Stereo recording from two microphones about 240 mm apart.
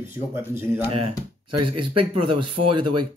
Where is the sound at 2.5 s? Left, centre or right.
Right.